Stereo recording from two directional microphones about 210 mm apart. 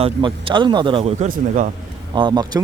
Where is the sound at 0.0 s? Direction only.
25° right (ahead or behind).